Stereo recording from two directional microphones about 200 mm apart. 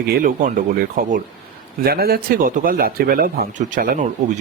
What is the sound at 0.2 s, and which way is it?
A man's voice, 45° right (ahead or behind).